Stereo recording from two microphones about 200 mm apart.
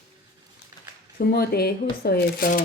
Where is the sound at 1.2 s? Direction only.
50° left (ahead or behind).